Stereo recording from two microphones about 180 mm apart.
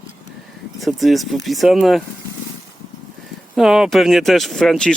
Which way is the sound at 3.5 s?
Centre (ahead or behind).